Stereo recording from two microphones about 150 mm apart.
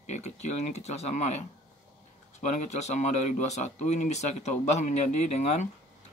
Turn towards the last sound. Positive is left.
turn(degrees=45)  # may be behind; listen again after turning